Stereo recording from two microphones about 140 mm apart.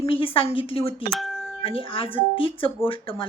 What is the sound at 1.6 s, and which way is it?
Speech, 40° left (ahead or behind).